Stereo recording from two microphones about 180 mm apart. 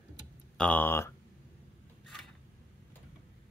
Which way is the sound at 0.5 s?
10° left (ahead or behind).